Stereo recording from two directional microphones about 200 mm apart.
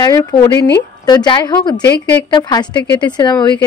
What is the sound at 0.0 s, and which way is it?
Speech, 15° left (ahead or behind).